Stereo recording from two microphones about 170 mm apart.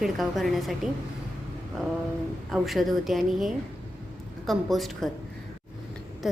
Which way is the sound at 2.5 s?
Centre (ahead or behind).